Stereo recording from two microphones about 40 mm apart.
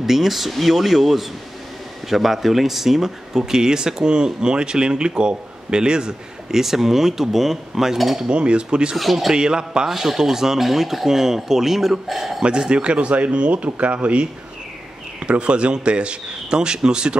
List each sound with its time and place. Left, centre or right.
0.0 s speech: centre
6.6 s speech: centre
8.3 s a man's voice: right
8.9 s speech: centre
9.3 s a man's voice: centre
9.8 s speech: centre
12.4 s a man's voice: right